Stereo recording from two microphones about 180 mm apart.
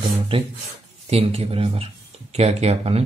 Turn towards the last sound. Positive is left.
turn(degrees=-35)  # may be behind; listen again after turning